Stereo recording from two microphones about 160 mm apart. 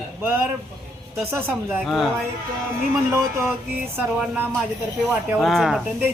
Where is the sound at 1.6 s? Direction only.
Centre (ahead or behind).